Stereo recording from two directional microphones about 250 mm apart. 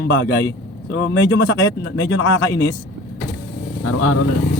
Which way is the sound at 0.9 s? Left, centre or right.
Left.